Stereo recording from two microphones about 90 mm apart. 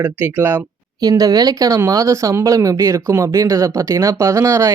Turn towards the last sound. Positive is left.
turn(degrees=-35)  # may be behind; listen again after turning